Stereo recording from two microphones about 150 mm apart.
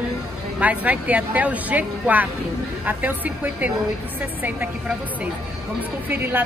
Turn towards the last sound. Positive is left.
turn(degrees=-15)  # may be behind; listen again after turning